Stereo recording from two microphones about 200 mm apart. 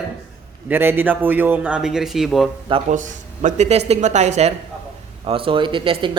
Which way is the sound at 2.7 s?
35° right (ahead or behind).